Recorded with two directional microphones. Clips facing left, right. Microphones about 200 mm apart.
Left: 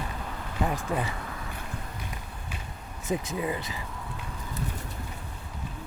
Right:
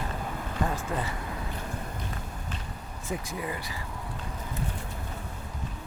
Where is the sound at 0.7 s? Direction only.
15° left (ahead or behind).